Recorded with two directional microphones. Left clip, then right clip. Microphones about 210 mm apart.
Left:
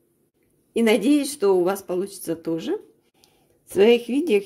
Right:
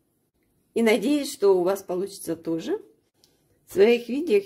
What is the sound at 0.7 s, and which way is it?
A woman's voice, 10° left (ahead or behind).